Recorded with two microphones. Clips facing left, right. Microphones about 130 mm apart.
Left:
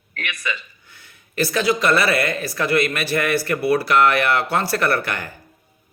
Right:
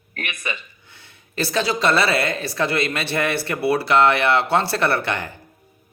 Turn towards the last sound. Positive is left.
turn(degrees=-25)  # may be behind; listen again after turning